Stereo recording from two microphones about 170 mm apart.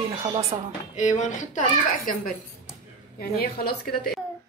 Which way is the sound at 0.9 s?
45° left (ahead or behind).